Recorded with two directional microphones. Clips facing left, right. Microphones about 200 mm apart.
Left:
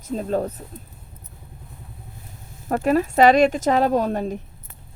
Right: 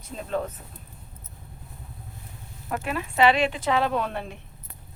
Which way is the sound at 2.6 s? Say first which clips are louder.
Left 11 dB; 40° left (ahead or behind).